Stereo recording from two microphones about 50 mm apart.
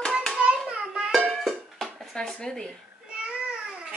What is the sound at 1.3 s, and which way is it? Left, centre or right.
Music, centre.